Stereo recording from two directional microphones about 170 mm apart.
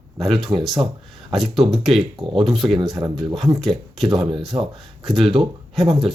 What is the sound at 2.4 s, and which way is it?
Speech, centre (ahead or behind).